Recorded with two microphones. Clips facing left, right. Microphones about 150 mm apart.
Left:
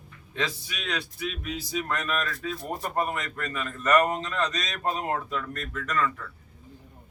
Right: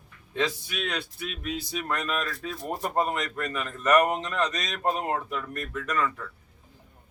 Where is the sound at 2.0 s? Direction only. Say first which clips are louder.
Left 1 dB; 10° right (ahead or behind).